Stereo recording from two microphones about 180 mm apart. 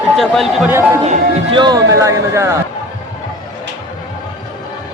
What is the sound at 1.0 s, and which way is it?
Speech, 35° right (ahead or behind).